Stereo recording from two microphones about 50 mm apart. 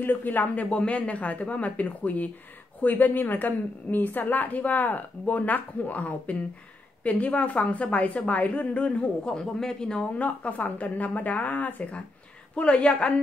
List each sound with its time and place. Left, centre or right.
0.0 s a woman's voice: left
0.7 s a woman's voice: left
10.1 s a woman's voice: left